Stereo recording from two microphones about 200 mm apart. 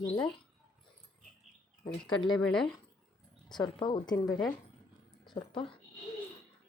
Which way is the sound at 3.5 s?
20° left (ahead or behind).